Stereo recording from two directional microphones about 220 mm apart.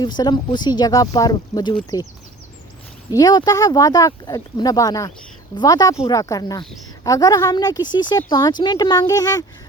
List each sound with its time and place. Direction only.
0.0 s speech: 20° left (ahead or behind)
3.2 s speech: 15° left (ahead or behind)